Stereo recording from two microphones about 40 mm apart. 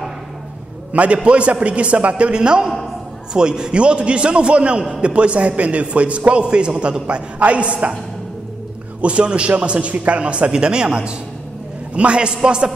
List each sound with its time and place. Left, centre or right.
0.9 s a man's voice: right
9.0 s a man's voice: right